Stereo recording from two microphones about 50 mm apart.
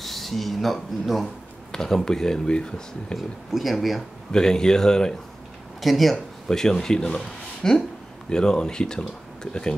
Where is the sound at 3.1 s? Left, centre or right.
Centre.